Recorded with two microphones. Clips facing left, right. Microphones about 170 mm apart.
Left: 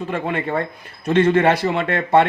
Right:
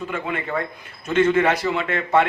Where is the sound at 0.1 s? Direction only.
35° left (ahead or behind).